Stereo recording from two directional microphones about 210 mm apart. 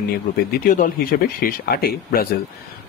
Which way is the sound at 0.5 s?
40° left (ahead or behind).